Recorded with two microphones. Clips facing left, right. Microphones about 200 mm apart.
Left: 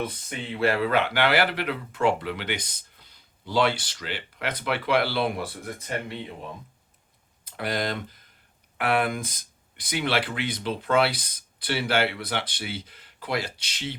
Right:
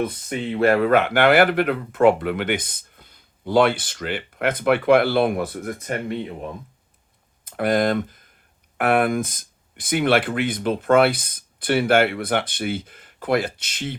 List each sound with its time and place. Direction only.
0.0 s speech: 50° right (ahead or behind)
7.4 s speech: 50° right (ahead or behind)